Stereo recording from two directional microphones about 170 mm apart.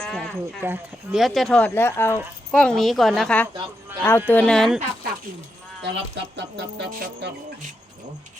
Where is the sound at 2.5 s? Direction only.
5° left (ahead or behind).